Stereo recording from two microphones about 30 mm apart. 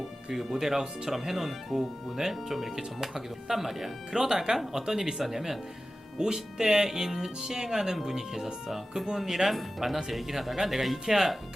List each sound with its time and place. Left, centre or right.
0.3 s speech: centre